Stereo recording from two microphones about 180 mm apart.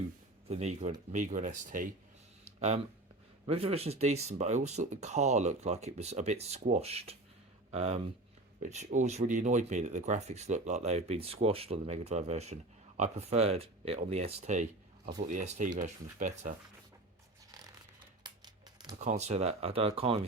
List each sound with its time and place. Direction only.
0.4 s speech: 35° right (ahead or behind)
18.2 s tearing: 25° right (ahead or behind)
18.9 s speech: 40° right (ahead or behind)